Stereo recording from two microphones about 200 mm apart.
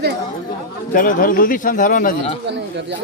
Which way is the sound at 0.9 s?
45° left (ahead or behind).